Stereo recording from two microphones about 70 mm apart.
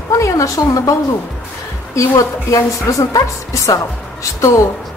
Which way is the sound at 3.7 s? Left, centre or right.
Left.